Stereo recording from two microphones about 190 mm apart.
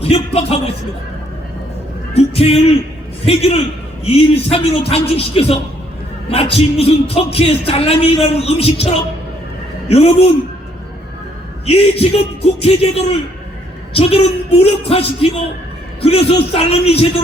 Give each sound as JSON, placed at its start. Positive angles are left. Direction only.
{"t": 0.0, "sound": "music", "side_deg": 30}
{"t": 2.1, "sound": "music", "side_deg": 30}
{"t": 11.6, "sound": "music", "side_deg": 30}